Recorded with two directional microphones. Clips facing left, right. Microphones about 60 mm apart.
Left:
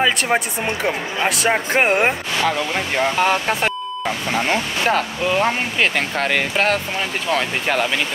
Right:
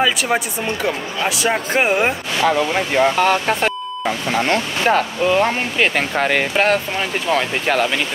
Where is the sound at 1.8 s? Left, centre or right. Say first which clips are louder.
Right 1 dB; centre.